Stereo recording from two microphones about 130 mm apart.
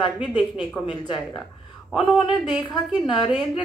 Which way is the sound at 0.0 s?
40° left (ahead or behind).